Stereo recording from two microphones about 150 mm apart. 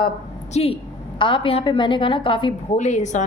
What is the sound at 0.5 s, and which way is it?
Speech, 45° left (ahead or behind).